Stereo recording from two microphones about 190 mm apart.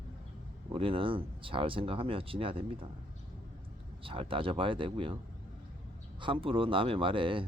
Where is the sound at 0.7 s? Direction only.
30° right (ahead or behind).